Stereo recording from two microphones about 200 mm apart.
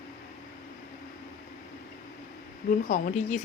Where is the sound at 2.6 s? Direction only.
40° left (ahead or behind).